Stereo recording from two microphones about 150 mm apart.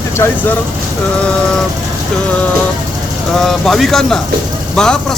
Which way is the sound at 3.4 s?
Centre (ahead or behind).